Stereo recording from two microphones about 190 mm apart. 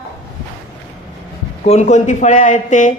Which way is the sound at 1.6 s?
35° left (ahead or behind).